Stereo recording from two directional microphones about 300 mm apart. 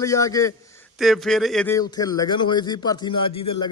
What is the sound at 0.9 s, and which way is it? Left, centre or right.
Speech, centre.